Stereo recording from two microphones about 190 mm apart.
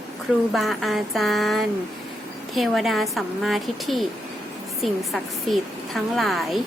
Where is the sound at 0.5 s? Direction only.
Centre (ahead or behind).